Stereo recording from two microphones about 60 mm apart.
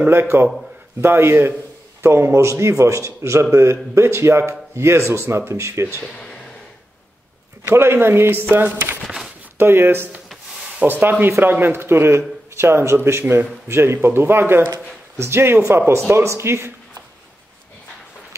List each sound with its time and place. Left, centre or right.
0.0 s speech: right
6.0 s speech: centre
7.7 s speech: right
9.0 s a sound: centre
9.6 s speech: right